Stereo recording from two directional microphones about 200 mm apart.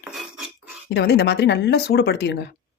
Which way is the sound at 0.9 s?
55° left (ahead or behind).